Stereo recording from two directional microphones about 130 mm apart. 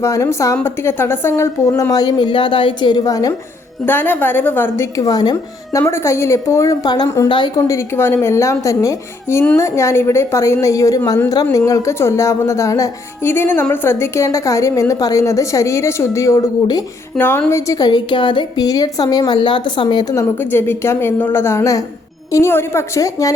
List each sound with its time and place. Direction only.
0.0 s speech: 25° left (ahead or behind)
3.8 s a woman's voice: 15° left (ahead or behind)
4.9 s speech: 30° left (ahead or behind)
5.8 s speech: 20° left (ahead or behind)
17.2 s a woman's voice: 15° left (ahead or behind)
17.5 s a woman's voice: 25° left (ahead or behind)
20.4 s a woman's voice: 15° left (ahead or behind)